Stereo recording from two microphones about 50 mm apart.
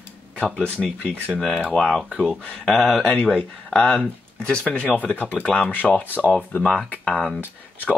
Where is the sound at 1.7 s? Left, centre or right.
Centre.